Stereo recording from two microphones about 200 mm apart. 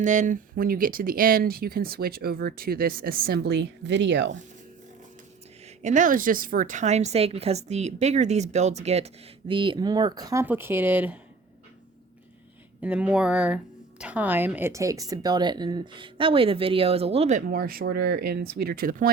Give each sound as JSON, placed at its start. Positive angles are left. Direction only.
{"t": 0.0, "sound": "speech", "side_deg": -40}
{"t": 5.6, "sound": "speech", "side_deg": -40}
{"t": 12.8, "sound": "speech", "side_deg": -5}